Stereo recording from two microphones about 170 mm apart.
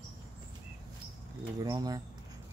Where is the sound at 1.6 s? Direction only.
20° right (ahead or behind).